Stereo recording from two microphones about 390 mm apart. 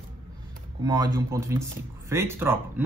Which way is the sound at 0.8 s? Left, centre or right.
Centre.